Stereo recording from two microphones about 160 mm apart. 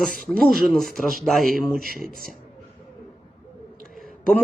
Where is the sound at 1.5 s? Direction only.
65° right (ahead or behind).